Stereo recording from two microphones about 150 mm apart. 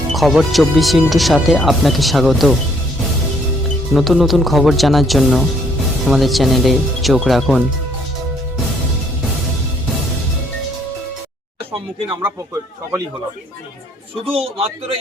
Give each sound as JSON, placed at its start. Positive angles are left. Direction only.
{"t": 0.1, "sound": "speech", "side_deg": 0}
{"t": 3.9, "sound": "speech", "side_deg": 0}
{"t": 14.3, "sound": "a man's voice", "side_deg": -40}